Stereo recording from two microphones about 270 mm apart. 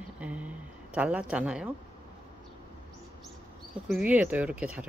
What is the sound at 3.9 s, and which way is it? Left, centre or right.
Speech, centre.